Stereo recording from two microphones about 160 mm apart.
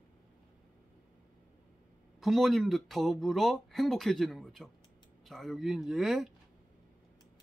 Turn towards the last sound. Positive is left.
turn(degrees=0)  # may be behind; listen again after turning